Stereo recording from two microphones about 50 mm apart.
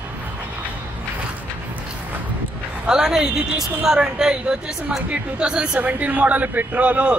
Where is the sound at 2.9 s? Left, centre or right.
Centre.